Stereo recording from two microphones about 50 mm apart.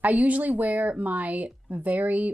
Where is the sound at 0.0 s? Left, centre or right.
Right.